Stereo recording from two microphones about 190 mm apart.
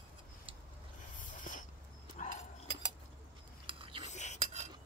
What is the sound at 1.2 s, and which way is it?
Dog, 45° left (ahead or behind).